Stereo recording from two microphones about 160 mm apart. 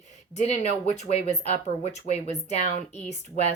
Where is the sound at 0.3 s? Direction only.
45° left (ahead or behind).